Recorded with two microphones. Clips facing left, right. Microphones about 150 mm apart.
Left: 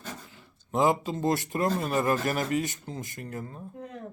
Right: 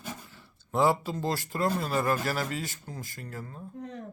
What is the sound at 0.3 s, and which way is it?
Speech, 15° left (ahead or behind).